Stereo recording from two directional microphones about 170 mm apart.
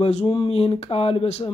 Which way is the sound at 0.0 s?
35° left (ahead or behind).